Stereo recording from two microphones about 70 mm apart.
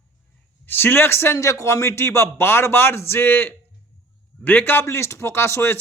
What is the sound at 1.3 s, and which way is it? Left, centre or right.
Speech, left.